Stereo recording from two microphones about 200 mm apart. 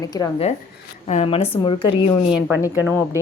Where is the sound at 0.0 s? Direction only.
20° left (ahead or behind).